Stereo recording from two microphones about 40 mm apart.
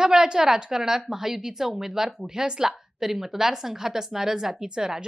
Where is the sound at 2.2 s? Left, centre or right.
Centre.